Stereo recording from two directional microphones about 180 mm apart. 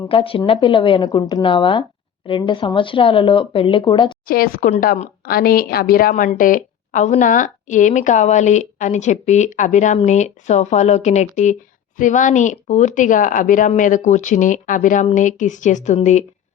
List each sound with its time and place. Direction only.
0.1 s speech: 30° left (ahead or behind)
4.3 s a woman's voice: 50° left (ahead or behind)